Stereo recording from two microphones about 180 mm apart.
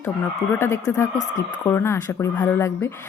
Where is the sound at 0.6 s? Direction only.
15° left (ahead or behind).